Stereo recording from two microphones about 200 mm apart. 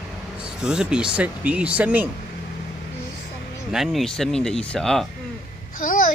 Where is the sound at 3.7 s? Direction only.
Centre (ahead or behind).